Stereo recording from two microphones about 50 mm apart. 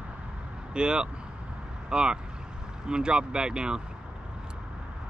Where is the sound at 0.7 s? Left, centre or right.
Centre.